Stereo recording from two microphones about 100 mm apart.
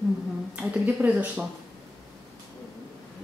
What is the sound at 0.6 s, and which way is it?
Speech, 15° right (ahead or behind).